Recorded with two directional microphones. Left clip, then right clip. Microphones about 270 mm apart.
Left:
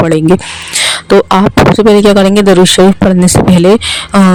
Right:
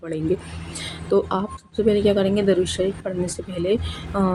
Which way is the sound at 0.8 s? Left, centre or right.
Left.